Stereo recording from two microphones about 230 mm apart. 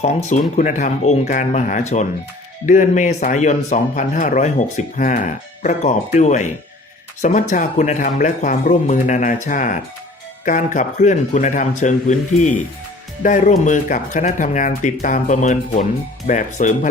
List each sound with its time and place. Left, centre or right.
0.0 s speech: left